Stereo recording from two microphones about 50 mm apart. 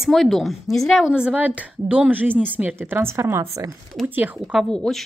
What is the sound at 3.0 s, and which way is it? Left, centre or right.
Speech, right.